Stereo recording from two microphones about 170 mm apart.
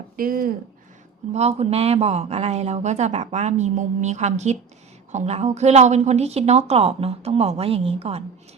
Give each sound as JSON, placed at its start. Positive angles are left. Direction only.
{"t": 0.2, "sound": "speech", "side_deg": -55}
{"t": 1.3, "sound": "speech", "side_deg": -40}